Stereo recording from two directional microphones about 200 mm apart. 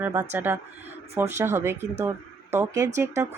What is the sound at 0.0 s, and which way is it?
Speech, 10° right (ahead or behind).